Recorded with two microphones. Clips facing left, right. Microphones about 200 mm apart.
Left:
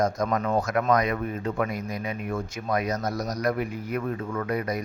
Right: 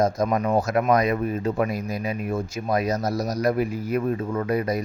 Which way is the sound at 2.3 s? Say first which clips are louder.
Right 3 dB; 25° right (ahead or behind).